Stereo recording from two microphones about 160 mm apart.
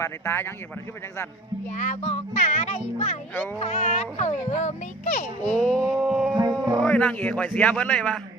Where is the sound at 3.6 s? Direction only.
45° left (ahead or behind).